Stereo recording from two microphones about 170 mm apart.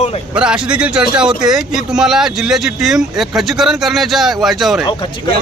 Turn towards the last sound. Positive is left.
turn(degrees=25)  # may be behind; listen again after turning